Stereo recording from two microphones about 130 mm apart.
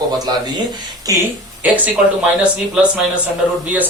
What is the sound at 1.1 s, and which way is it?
Speech, 25° right (ahead or behind).